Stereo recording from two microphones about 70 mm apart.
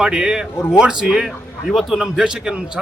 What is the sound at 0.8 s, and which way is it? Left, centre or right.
A man's voice, centre.